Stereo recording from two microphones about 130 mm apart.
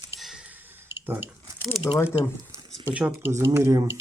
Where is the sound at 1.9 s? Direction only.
10° left (ahead or behind).